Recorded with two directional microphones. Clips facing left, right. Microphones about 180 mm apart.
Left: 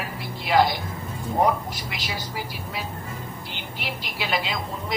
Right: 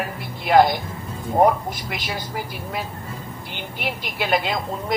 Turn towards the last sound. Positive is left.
turn(degrees=-50)  # may be behind; listen again after turning